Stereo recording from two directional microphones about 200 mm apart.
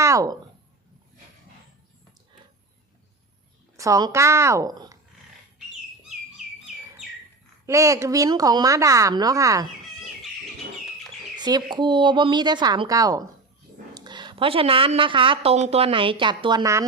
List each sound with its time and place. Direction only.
0.0 s a sound: 15° right (ahead or behind)
3.8 s a woman's voice: 15° right (ahead or behind)
7.7 s a woman's voice: 15° right (ahead or behind)
11.3 s a woman's voice: 20° right (ahead or behind)